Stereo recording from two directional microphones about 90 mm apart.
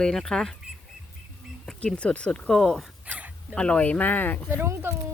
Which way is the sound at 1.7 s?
10° left (ahead or behind).